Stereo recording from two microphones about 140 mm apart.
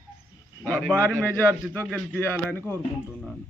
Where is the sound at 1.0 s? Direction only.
15° left (ahead or behind).